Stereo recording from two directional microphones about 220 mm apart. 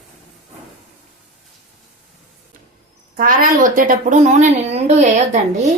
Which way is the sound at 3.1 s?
40° right (ahead or behind).